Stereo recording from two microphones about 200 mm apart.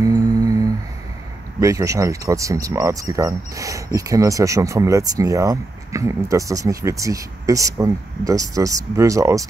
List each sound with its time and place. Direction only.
0.0 s humming: 15° right (ahead or behind)
1.6 s speech: 15° right (ahead or behind)